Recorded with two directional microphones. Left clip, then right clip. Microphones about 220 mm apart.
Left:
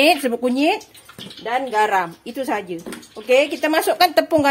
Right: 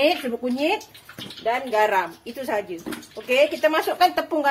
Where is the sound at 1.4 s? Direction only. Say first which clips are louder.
Left 2 dB; 40° left (ahead or behind).